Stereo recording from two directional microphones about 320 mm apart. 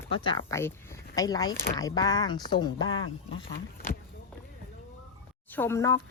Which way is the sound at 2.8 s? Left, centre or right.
Left.